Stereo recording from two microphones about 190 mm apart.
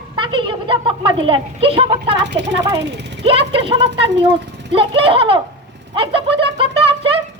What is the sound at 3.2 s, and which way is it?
Speech, 30° right (ahead or behind).